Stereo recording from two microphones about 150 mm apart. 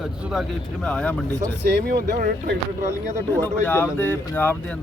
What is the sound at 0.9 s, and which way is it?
Speech, 5° left (ahead or behind).